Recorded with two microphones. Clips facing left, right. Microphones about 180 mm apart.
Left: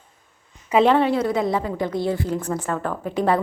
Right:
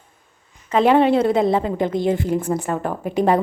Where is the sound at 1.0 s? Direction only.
25° right (ahead or behind).